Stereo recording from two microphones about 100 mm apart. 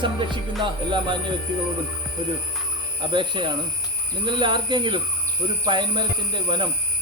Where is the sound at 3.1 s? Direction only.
55° right (ahead or behind).